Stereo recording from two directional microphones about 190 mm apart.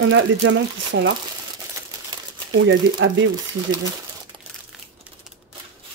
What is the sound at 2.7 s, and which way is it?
Speech, 75° right (ahead or behind).